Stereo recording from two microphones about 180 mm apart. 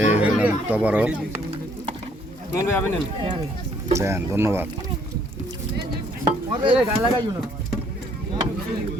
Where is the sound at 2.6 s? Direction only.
10° left (ahead or behind).